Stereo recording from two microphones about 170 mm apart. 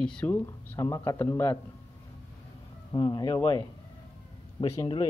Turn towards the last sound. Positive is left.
turn(degrees=25)  # may be behind; listen again after turning